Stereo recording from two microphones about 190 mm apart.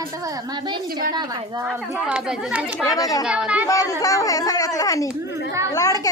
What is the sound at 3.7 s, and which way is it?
A child's voice, 15° left (ahead or behind).